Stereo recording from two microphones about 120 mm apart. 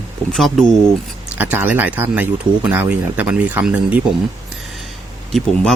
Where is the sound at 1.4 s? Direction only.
15° right (ahead or behind).